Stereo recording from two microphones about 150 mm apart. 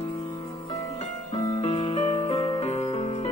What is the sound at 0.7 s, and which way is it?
Music, 40° left (ahead or behind).